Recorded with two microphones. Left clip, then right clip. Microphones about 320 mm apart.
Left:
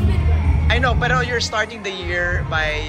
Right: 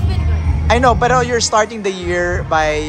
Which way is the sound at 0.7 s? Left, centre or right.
Right.